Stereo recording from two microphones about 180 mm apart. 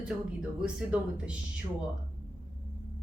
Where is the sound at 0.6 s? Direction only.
5° right (ahead or behind).